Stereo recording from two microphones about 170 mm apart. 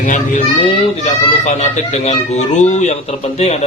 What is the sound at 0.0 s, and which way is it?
A child's voice, 50° left (ahead or behind).